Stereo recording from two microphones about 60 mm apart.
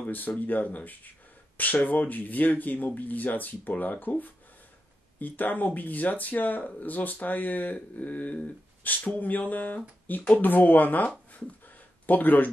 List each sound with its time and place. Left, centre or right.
0.0 s speech: left